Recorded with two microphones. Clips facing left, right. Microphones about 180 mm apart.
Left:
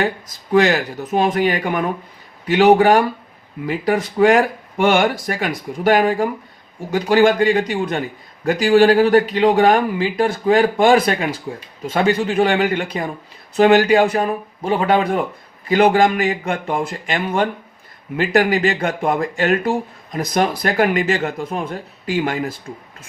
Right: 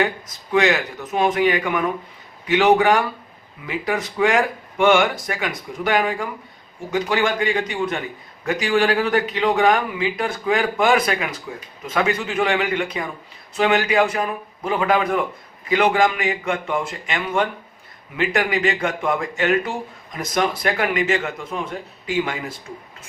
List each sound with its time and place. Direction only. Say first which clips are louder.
0.5 s speech: left 3 dB; 35° left (ahead or behind)